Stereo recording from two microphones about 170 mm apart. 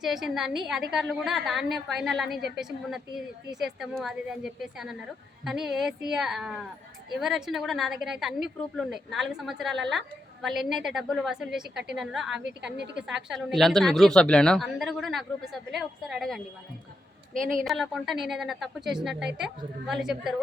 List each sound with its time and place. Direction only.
0.0 s a woman's voice: centre (ahead or behind)
17.3 s a woman's voice: 55° right (ahead or behind)
17.6 s a woman's voice: centre (ahead or behind)